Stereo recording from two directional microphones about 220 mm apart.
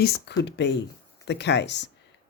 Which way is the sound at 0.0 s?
45° left (ahead or behind).